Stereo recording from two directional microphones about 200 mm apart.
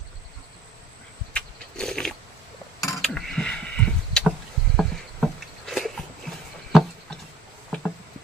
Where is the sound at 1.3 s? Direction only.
5° left (ahead or behind).